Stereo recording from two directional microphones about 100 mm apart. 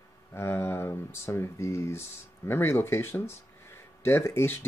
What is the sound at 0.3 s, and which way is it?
Speech, 25° left (ahead or behind).